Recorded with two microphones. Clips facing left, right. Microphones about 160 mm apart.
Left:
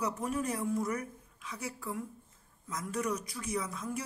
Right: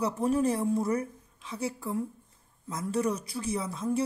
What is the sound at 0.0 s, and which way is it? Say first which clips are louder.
A woman's voice: right 7 dB; 30° right (ahead or behind).